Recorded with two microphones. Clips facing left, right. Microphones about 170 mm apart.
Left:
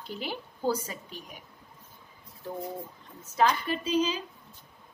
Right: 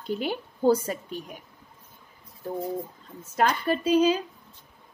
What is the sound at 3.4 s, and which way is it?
Speech, 50° right (ahead or behind).